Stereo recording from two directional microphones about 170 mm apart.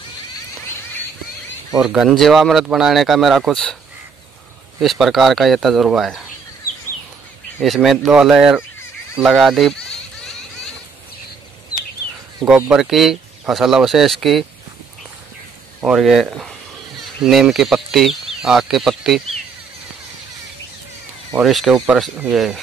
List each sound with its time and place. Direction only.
1.8 s speech: centre (ahead or behind)
4.7 s speech: centre (ahead or behind)
7.6 s speech: centre (ahead or behind)
9.1 s a sound: centre (ahead or behind)
12.4 s speech: 5° right (ahead or behind)
15.8 s speech: centre (ahead or behind)
21.4 s speech: centre (ahead or behind)